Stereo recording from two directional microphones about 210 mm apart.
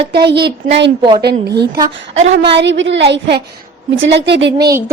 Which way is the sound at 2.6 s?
60° right (ahead or behind).